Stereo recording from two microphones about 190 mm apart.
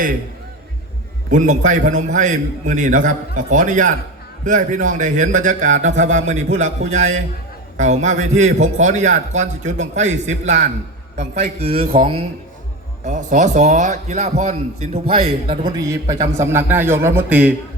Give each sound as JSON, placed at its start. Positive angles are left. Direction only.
{"t": 1.3, "sound": "a man's voice", "side_deg": -40}
{"t": 13.1, "sound": "a man's voice", "side_deg": -40}
{"t": 15.8, "sound": "a man's voice", "side_deg": -15}